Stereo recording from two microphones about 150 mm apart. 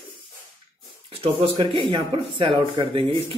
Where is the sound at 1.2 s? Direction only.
40° right (ahead or behind).